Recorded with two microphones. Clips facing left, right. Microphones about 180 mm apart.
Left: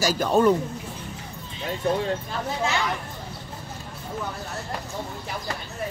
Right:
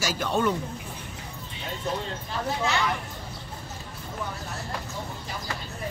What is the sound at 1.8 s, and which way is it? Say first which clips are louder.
Speech: left 7 dB; 60° left (ahead or behind).